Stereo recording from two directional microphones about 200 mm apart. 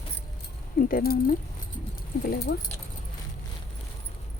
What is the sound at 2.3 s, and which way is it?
Speech, 55° left (ahead or behind).